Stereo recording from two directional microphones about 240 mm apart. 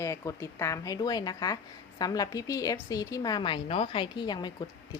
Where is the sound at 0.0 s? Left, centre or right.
Centre.